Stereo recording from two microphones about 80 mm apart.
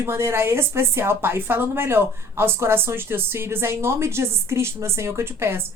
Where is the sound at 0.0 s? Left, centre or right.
Right.